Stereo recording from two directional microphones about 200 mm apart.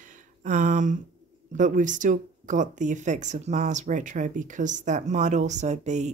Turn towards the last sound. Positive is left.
turn(degrees=-35)  # may be behind; listen again after turning